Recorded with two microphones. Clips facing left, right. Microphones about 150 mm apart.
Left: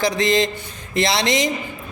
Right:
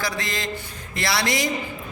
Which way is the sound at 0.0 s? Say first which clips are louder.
Left 10 dB; 20° left (ahead or behind).